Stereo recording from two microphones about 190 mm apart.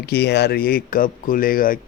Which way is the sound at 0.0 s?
60° left (ahead or behind).